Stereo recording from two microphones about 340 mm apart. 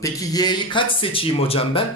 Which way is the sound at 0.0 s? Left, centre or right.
Centre.